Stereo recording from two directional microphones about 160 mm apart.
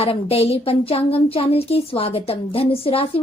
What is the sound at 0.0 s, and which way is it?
A woman's voice, 35° left (ahead or behind).